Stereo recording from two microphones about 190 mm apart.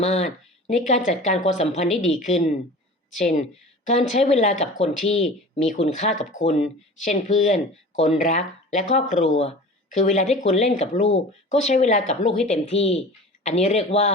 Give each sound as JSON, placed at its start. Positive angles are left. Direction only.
{"t": 0.0, "sound": "speech", "side_deg": 40}